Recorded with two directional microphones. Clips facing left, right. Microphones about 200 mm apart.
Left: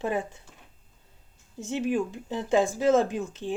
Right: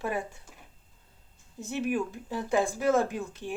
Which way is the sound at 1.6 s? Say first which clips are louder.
Left 3 dB; 20° left (ahead or behind).